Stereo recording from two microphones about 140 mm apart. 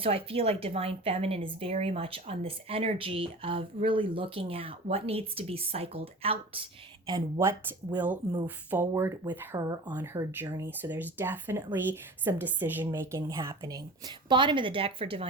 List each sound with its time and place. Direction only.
0.0 s speech: 40° right (ahead or behind)
7.3 s speech: 15° right (ahead or behind)
9.9 s speech: 15° right (ahead or behind)
14.3 s a woman's voice: 35° right (ahead or behind)